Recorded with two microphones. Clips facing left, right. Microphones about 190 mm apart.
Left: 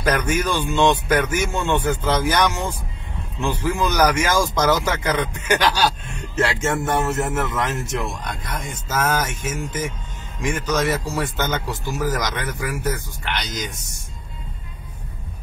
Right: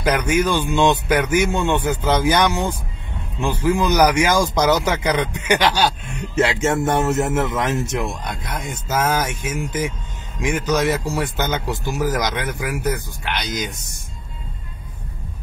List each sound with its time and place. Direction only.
0.0 s speech: 10° right (ahead or behind)